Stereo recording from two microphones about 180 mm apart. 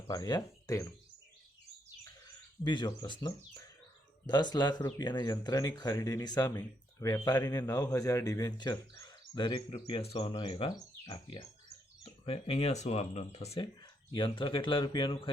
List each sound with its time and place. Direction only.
0.1 s speech: 20° left (ahead or behind)
2.6 s speech: 25° left (ahead or behind)